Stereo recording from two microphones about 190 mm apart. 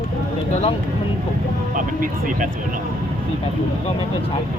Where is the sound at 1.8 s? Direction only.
45° right (ahead or behind).